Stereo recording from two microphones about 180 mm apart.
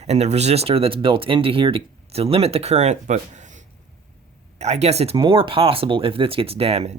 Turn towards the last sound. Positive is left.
turn(degrees=-35)  # may be behind; listen again after turning